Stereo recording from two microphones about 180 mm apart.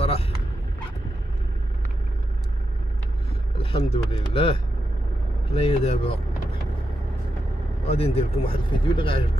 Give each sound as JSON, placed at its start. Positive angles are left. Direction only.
{"t": 3.5, "sound": "speech", "side_deg": 30}
{"t": 7.8, "sound": "speech", "side_deg": 35}